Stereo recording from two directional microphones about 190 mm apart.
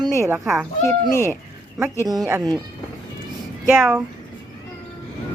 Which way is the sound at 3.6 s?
5° right (ahead or behind).